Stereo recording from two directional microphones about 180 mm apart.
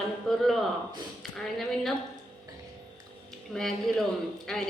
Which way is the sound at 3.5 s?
Centre (ahead or behind).